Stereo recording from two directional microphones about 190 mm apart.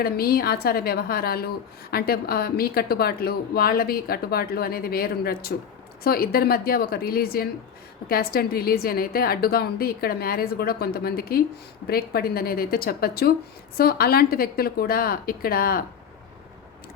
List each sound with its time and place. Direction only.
0.0 s a woman's voice: 55° left (ahead or behind)